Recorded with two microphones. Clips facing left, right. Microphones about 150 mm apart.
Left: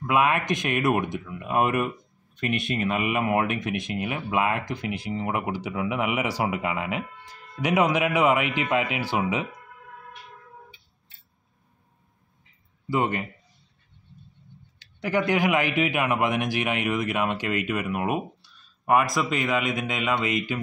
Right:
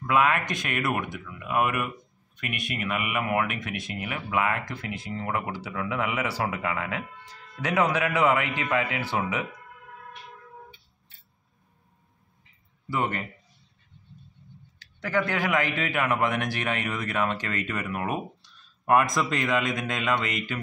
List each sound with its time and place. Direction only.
0.0 s a man's voice: 20° left (ahead or behind)
12.9 s a man's voice: 15° left (ahead or behind)
15.0 s a man's voice: 15° left (ahead or behind)